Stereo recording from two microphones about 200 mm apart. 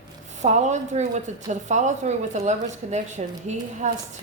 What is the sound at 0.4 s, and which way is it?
Speech, 35° right (ahead or behind).